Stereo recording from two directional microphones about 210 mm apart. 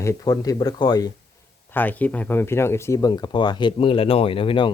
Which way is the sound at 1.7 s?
10° left (ahead or behind).